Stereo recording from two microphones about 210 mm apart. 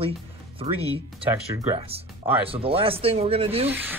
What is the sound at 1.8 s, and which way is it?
Speech, 25° right (ahead or behind).